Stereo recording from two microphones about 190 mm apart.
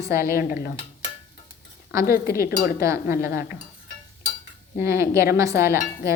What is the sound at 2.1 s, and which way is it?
Speech, 50° left (ahead or behind).